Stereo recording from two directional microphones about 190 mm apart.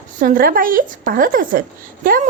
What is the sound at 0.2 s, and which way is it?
A woman's voice, 45° right (ahead or behind).